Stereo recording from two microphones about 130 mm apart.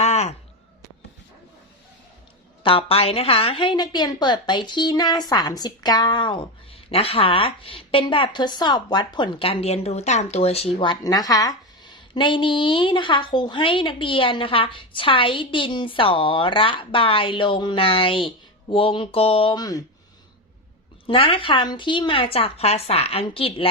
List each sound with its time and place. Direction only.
0.0 s a sound: 60° left (ahead or behind)
2.6 s a woman's voice: 45° left (ahead or behind)
11.0 s a woman's voice: 30° left (ahead or behind); by 19.5 s 45° left (ahead or behind)
19.5 s speech: 30° left (ahead or behind)
21.1 s a woman's voice: 45° left (ahead or behind)